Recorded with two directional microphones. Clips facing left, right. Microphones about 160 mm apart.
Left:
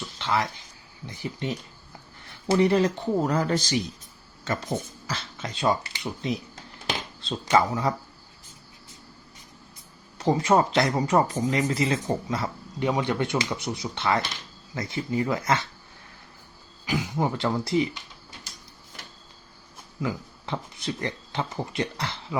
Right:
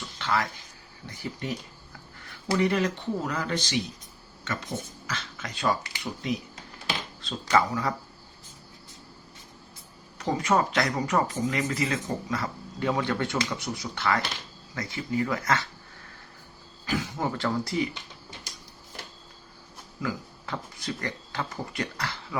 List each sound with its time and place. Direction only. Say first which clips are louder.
0.2 s a sound: left 2 dB; 20° left (ahead or behind)
1.0 s speech: left 3 dB; 20° left (ahead or behind)
10.2 s speech: left 4 dB; 30° left (ahead or behind)
16.8 s speech: left 3 dB; 15° left (ahead or behind)
20.0 s speech: left 2 dB; 25° left (ahead or behind)